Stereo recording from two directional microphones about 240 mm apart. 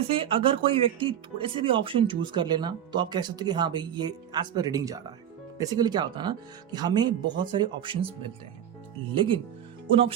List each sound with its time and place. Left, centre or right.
0.1 s speech: right
9.1 s speech: right